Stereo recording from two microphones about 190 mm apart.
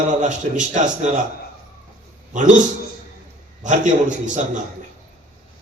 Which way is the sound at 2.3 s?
40° right (ahead or behind).